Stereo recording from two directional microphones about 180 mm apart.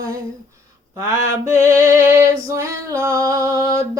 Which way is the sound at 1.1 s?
15° right (ahead or behind).